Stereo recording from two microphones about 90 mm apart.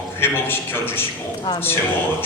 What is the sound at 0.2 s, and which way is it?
A man's voice, 25° left (ahead or behind).